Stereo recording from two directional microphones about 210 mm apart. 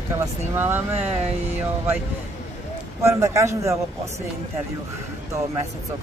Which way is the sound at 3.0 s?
15° right (ahead or behind).